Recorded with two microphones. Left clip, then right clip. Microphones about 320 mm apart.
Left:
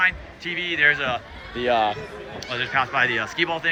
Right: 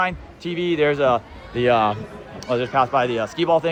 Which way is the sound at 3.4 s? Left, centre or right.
Centre.